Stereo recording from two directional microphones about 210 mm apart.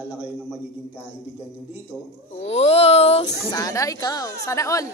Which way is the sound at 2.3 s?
30° left (ahead or behind).